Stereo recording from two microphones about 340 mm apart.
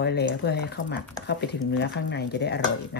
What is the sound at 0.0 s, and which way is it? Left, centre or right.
Speech, left.